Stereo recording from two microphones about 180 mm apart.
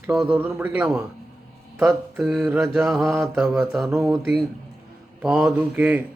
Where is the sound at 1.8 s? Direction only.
5° right (ahead or behind).